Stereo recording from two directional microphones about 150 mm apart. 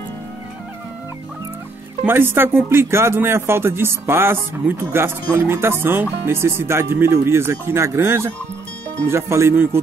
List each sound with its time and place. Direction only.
2.0 s speech: 15° right (ahead or behind)